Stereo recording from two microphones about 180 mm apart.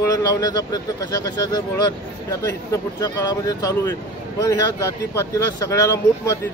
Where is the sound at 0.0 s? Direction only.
20° left (ahead or behind).